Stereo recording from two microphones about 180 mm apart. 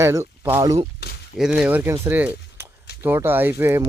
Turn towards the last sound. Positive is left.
turn(degrees=-15)  # may be behind; listen again after turning